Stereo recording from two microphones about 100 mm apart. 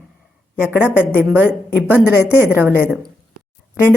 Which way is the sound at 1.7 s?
15° right (ahead or behind).